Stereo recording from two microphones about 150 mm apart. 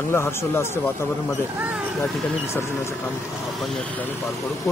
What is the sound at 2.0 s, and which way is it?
Speech, 20° left (ahead or behind).